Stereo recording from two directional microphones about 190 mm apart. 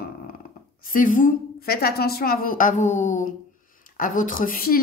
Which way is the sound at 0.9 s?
45° left (ahead or behind).